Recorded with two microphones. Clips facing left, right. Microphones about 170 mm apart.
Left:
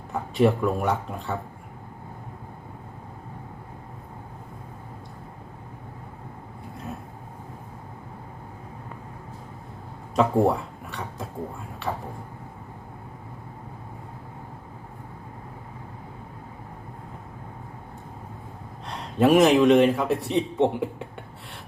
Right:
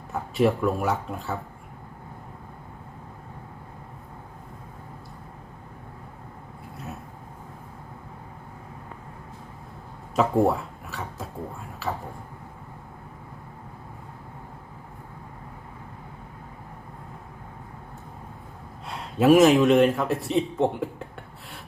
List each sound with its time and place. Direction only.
0.1 s speech: centre (ahead or behind)
10.2 s a sound: centre (ahead or behind)
11.8 s speech: 5° right (ahead or behind)
18.9 s a man's voice: centre (ahead or behind)